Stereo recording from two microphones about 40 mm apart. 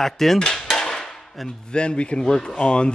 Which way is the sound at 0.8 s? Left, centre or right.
Centre.